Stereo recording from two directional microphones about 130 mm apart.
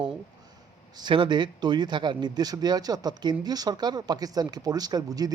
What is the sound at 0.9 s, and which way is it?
Speech, 40° right (ahead or behind).